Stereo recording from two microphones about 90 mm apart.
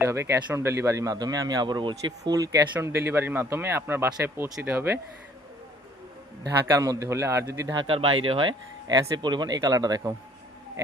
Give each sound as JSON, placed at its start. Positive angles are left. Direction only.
{"t": 0.0, "sound": "a man's voice", "side_deg": -30}
{"t": 2.3, "sound": "a man's voice", "side_deg": -40}
{"t": 2.8, "sound": "speech", "side_deg": -30}
{"t": 6.7, "sound": "a man's voice", "side_deg": -40}
{"t": 7.8, "sound": "speech", "side_deg": -90}
{"t": 8.9, "sound": "speech", "side_deg": -50}